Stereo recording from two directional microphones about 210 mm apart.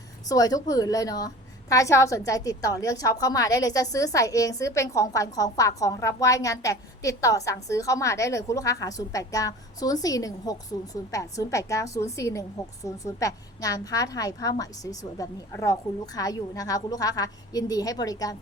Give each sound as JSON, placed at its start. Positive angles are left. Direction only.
{"t": 0.3, "sound": "a woman's voice", "side_deg": 15}